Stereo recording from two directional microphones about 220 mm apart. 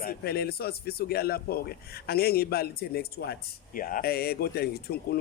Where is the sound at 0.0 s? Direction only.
45° left (ahead or behind).